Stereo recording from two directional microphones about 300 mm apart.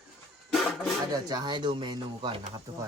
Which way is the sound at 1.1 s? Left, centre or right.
Centre.